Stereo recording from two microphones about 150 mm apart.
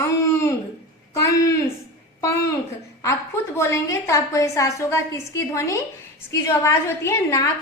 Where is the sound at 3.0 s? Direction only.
20° left (ahead or behind).